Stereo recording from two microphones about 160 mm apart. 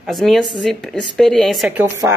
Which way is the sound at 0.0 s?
Centre (ahead or behind).